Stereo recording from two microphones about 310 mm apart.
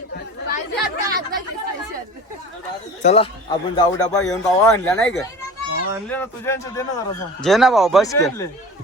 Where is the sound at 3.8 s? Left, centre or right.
Centre.